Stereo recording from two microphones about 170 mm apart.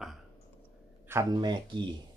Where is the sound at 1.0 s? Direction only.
15° right (ahead or behind).